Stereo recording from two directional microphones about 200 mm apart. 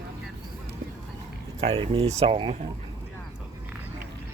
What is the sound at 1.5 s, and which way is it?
Speech, 30° right (ahead or behind).